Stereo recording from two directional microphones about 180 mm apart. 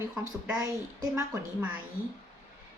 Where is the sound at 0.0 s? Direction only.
15° right (ahead or behind).